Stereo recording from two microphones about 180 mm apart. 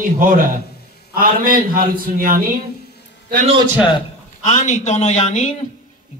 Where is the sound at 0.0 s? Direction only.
50° right (ahead or behind).